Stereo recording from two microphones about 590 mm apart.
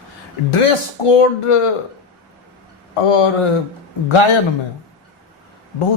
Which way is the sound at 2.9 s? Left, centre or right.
Left.